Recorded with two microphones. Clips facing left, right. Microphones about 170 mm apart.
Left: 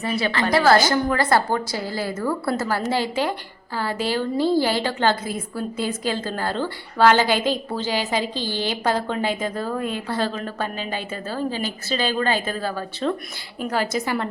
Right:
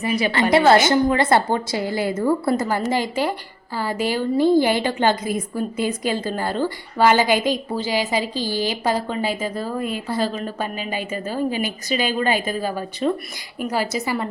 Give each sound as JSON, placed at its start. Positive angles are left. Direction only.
{"t": 0.0, "sound": "a woman's voice", "side_deg": -15}